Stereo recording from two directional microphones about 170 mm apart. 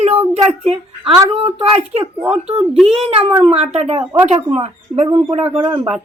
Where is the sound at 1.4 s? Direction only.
35° right (ahead or behind).